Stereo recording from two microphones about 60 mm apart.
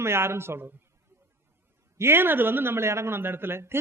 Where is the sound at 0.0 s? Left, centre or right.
Right.